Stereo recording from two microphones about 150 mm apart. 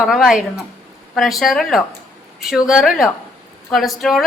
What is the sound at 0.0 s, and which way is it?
A woman's voice, centre (ahead or behind).